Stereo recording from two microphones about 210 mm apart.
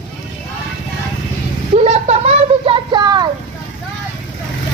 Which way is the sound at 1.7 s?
30° right (ahead or behind).